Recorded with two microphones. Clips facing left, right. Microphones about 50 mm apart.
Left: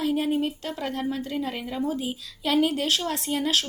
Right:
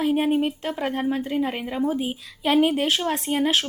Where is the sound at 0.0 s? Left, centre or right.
Right.